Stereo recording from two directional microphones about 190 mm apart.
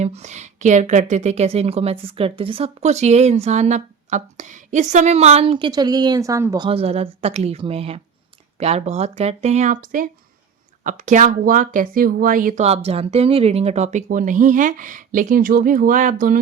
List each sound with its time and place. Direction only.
0.0 s a woman's voice: 35° right (ahead or behind); by 6.7 s 15° right (ahead or behind)
6.7 s a woman's voice: 30° right (ahead or behind)